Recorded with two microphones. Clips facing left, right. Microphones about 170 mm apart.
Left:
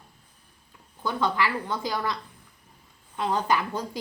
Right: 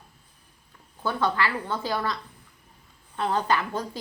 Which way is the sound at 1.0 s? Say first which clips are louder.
Even; 15° left (ahead or behind).